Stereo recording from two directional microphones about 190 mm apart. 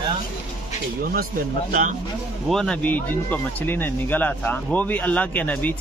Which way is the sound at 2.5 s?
Centre (ahead or behind).